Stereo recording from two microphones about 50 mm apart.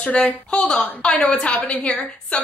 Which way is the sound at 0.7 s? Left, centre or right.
Left.